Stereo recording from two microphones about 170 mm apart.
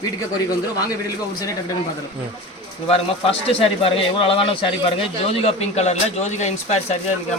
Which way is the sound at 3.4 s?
35° left (ahead or behind).